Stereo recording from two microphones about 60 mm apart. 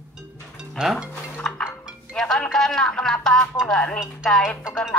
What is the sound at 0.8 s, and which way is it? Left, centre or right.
Speech, centre.